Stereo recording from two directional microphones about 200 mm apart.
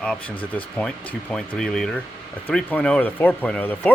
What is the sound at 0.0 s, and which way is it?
Speech, 5° left (ahead or behind).